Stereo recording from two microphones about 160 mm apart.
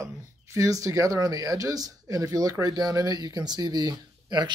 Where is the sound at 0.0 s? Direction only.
20° right (ahead or behind).